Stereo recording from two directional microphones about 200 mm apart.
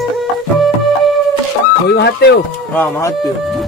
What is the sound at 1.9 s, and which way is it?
Chicken, 55° left (ahead or behind).